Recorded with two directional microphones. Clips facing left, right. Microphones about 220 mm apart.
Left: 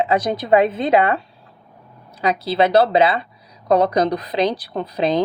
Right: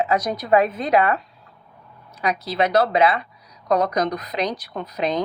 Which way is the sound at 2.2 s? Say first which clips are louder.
Left 4 dB; 30° left (ahead or behind).